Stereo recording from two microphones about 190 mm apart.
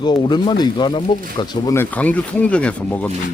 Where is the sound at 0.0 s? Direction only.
25° left (ahead or behind).